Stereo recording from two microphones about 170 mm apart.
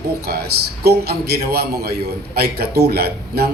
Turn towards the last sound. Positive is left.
turn(degrees=-65)  # may be behind; listen again after turning